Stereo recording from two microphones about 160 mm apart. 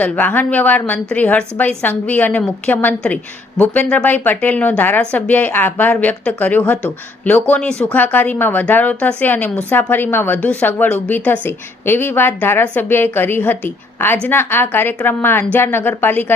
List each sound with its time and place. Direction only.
0.0 s a woman's voice: 10° left (ahead or behind)